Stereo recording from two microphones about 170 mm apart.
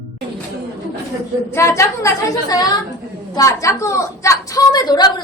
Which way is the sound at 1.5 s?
15° left (ahead or behind).